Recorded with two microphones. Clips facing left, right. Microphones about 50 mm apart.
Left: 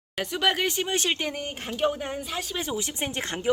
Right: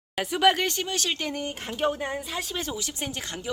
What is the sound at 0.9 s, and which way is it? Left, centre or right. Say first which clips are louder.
Speech: left 2 dB; left.